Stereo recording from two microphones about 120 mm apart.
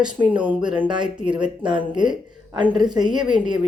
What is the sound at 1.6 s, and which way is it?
Speech, 40° right (ahead or behind).